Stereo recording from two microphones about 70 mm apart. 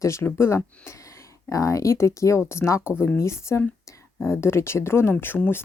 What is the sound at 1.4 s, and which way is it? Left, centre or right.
A woman's voice, left.